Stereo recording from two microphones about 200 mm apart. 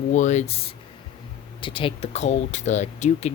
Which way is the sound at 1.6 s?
25° left (ahead or behind).